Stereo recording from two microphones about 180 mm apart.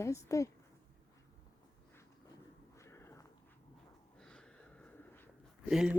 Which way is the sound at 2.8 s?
15° left (ahead or behind).